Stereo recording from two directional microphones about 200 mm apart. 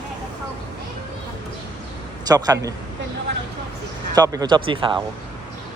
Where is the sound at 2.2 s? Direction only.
20° right (ahead or behind).